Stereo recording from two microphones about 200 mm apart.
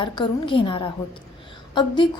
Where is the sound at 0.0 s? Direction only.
25° left (ahead or behind).